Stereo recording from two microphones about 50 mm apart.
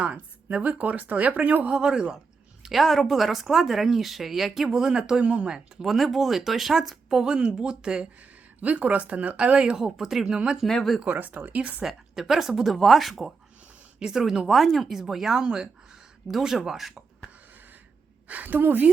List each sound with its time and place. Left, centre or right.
0.5 s speech: right
1.7 s speech: centre
2.6 s speech: centre
5.8 s speech: centre
8.6 s speech: right
9.7 s speech: centre
11.0 s speech: right
11.8 s speech: centre
18.3 s speech: right